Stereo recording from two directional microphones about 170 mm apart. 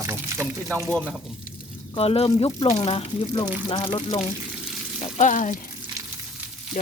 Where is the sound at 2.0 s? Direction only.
35° left (ahead or behind).